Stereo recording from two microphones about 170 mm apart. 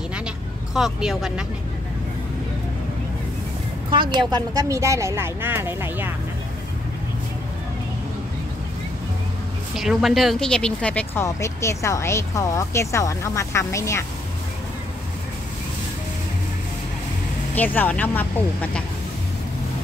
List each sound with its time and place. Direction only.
0.7 s speech: centre (ahead or behind)
3.9 s a woman's voice: 25° right (ahead or behind)
9.8 s speech: centre (ahead or behind); by 14.0 s 15° left (ahead or behind)
17.6 s speech: 10° left (ahead or behind)